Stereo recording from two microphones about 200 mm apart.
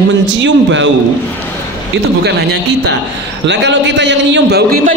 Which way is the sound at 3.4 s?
60° right (ahead or behind).